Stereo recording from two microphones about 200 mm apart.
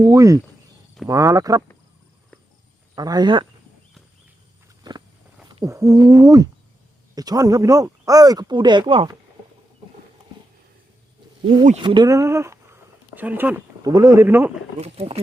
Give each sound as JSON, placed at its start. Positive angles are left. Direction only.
{"t": 0.0, "sound": "speech", "side_deg": -15}
{"t": 2.9, "sound": "speech", "side_deg": -20}
{"t": 4.8, "sound": "vehicle", "side_deg": -20}
{"t": 5.5, "sound": "speech", "side_deg": -20}
{"t": 11.8, "sound": "speech", "side_deg": -25}
{"t": 14.8, "sound": "speech", "side_deg": -30}